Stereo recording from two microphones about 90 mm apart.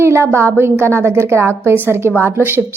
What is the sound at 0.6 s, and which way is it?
A woman's voice, 30° right (ahead or behind).